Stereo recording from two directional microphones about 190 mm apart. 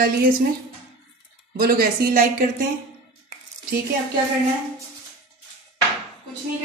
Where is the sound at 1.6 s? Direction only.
50° right (ahead or behind).